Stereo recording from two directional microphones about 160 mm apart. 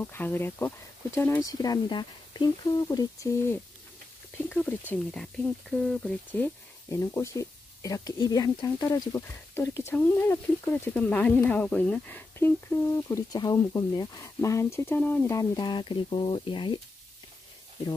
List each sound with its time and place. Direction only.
0.0 s speech: 15° left (ahead or behind); by 16.8 s 30° left (ahead or behind)